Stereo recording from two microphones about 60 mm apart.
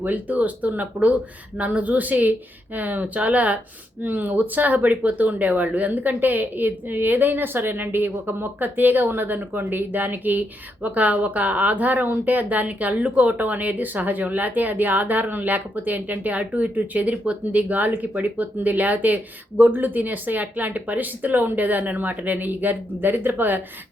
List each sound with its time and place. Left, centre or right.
0.0 s a woman's voice: right